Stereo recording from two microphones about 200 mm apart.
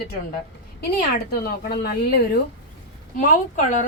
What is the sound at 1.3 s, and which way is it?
A woman's voice, 50° left (ahead or behind).